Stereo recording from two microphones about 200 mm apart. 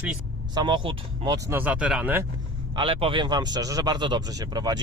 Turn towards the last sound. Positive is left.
turn(degrees=-20)  # may be behind; listen again after turning